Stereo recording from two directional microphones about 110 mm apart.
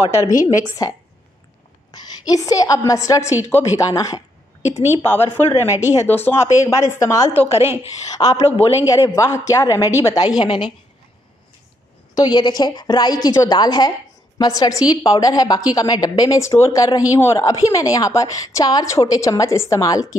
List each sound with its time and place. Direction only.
0.2 s a woman's voice: 30° left (ahead or behind)
5.0 s speech: 20° left (ahead or behind)
7.3 s a woman's voice: 65° left (ahead or behind)
8.2 s a woman's voice: 40° left (ahead or behind)
12.2 s a woman's voice: 40° left (ahead or behind)